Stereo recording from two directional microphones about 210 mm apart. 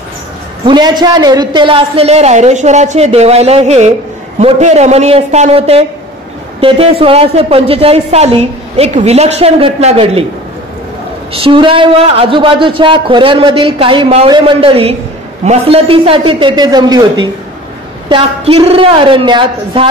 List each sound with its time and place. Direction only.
0.7 s a man's voice: 20° right (ahead or behind)
11.3 s a man's voice: 25° right (ahead or behind)